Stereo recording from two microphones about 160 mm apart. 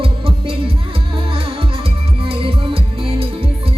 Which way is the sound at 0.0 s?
35° right (ahead or behind).